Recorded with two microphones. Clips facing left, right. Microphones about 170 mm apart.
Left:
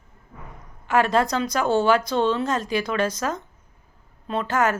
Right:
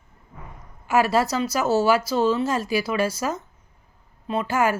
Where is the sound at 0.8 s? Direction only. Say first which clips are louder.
Even; 10° right (ahead or behind).